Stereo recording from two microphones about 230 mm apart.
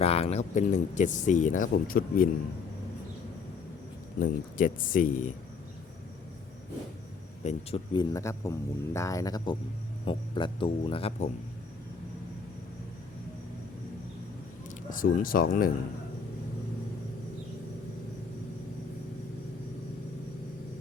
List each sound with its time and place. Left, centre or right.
0.0 s speech: left
4.2 s speech: left
7.4 s speech: left
8.1 s speech: centre
14.8 s speech: left